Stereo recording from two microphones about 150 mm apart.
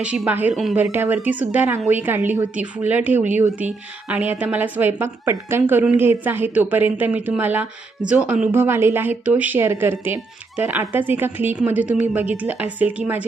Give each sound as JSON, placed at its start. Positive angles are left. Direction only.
{"t": 0.0, "sound": "a woman's voice", "side_deg": -10}
{"t": 0.5, "sound": "speech", "side_deg": 0}
{"t": 0.8, "sound": "a woman's voice", "side_deg": -15}